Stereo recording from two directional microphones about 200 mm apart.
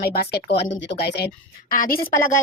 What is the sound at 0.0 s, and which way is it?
A woman's voice, 50° left (ahead or behind).